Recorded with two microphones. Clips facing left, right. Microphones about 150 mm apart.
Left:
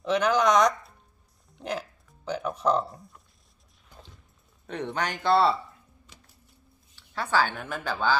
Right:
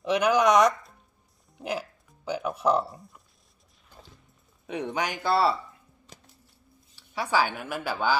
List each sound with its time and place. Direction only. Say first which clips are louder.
0.0 s speech: right 1 dB; 10° right (ahead or behind)
1.6 s music: right 1 dB; 10° right (ahead or behind)
4.6 s speech: right 1 dB; 10° right (ahead or behind)
6.1 s a sound: right 5 dB; 45° right (ahead or behind)
7.0 s speech: even; 10° right (ahead or behind)